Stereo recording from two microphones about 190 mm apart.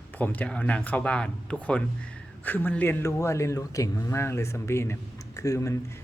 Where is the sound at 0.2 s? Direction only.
5° left (ahead or behind).